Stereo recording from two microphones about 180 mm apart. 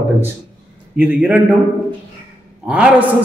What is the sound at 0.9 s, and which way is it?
Speech, 5° right (ahead or behind).